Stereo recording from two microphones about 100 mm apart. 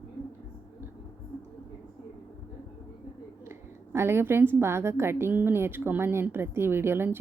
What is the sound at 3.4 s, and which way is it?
A woman's voice, 25° right (ahead or behind).